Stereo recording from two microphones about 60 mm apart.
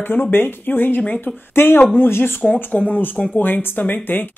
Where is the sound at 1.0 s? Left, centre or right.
Centre.